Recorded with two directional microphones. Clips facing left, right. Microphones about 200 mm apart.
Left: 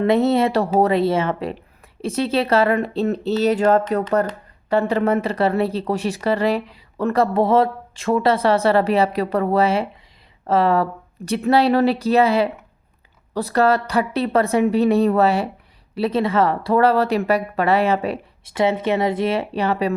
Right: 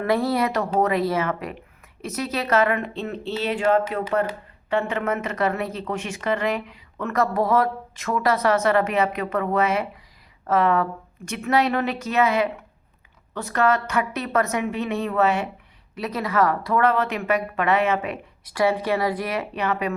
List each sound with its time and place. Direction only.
0.0 s speech: 25° left (ahead or behind)